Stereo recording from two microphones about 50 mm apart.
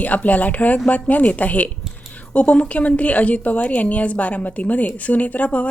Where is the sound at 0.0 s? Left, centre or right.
Left.